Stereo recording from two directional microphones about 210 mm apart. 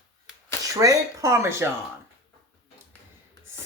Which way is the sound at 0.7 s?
15° right (ahead or behind).